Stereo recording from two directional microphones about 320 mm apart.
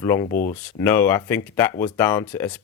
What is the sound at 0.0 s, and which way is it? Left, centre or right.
Speech, centre.